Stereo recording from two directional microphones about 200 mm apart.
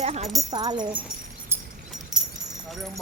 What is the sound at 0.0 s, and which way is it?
Speech, 35° right (ahead or behind).